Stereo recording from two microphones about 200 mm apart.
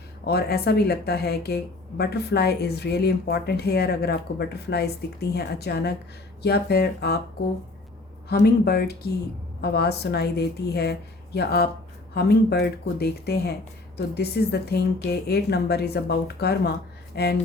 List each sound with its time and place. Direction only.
0.3 s a woman's voice: 55° left (ahead or behind)
8.3 s a woman's voice: 55° left (ahead or behind)